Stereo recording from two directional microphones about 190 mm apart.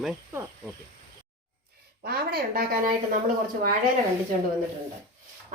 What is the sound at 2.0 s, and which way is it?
Speech, 55° right (ahead or behind).